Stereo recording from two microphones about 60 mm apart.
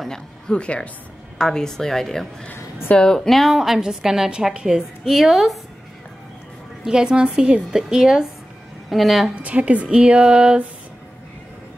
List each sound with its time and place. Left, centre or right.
0.0 s a woman's voice: centre
2.4 s a woman's voice: centre
6.8 s a woman's voice: centre
9.3 s a woman's voice: right